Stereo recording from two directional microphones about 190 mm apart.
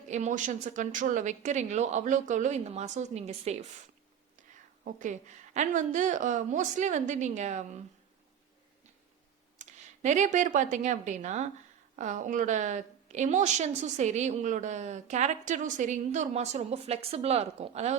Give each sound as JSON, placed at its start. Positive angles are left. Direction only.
{"t": 0.1, "sound": "a woman's voice", "side_deg": -40}
{"t": 4.9, "sound": "a woman's voice", "side_deg": -40}
{"t": 9.6, "sound": "a woman's voice", "side_deg": -40}